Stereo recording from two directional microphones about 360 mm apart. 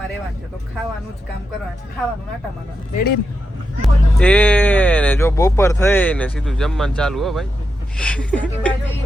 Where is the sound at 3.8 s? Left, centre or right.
Centre.